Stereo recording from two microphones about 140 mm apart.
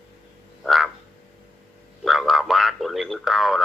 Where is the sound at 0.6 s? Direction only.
Centre (ahead or behind).